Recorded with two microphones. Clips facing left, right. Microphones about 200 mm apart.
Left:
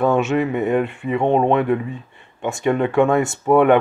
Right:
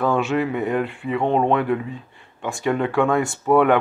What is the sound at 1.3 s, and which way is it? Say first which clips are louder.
Speech: left 3 dB; 20° left (ahead or behind).